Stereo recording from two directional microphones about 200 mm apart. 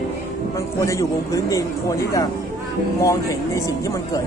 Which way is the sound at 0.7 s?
15° left (ahead or behind).